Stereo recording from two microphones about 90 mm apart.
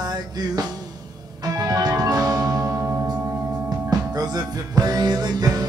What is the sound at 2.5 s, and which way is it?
Singing bowl, 30° right (ahead or behind).